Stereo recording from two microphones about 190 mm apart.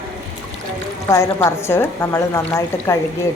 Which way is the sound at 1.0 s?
15° left (ahead or behind).